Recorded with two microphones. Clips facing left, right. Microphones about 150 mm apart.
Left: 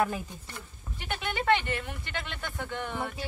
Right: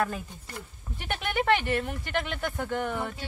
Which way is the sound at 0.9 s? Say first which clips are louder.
Right 4 dB; 55° right (ahead or behind).